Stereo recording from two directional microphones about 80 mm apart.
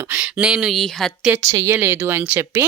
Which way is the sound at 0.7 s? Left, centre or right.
Centre.